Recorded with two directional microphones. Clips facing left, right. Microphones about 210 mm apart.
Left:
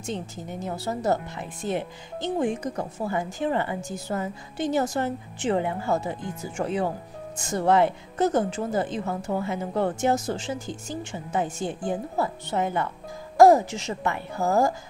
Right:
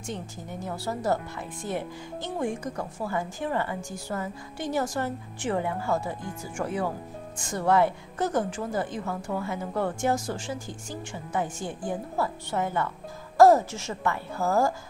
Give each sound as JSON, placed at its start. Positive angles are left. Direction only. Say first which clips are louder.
{"t": 0.0, "sound": "a woman's voice", "louder": "left 4 dB", "side_deg": 20}